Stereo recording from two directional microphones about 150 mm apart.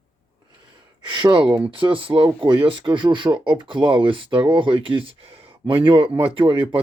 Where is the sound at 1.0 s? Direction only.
30° right (ahead or behind).